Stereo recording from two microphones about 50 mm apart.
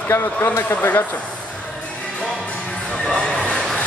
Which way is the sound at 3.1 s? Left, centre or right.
Centre.